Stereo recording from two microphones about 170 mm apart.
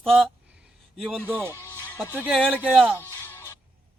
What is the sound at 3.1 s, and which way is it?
Music, 15° left (ahead or behind).